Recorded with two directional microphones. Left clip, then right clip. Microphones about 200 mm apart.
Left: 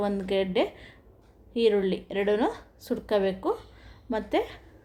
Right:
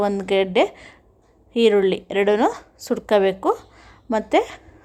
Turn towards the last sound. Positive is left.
turn(degrees=-20)  # may be behind; listen again after turning